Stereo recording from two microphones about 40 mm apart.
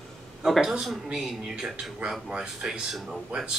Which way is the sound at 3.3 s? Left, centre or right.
Right.